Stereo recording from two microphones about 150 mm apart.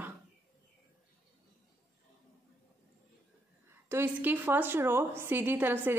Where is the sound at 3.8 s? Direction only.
15° right (ahead or behind).